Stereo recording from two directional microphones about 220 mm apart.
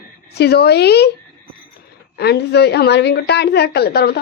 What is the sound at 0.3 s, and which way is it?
Speech, 45° left (ahead or behind).